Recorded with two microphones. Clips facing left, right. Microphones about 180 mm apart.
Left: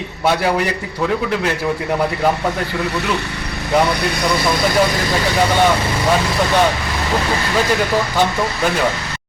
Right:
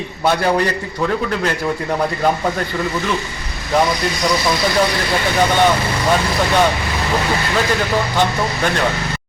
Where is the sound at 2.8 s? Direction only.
70° left (ahead or behind).